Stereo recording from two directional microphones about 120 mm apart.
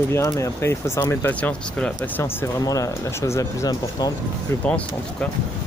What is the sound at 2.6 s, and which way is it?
Speech, 30° left (ahead or behind).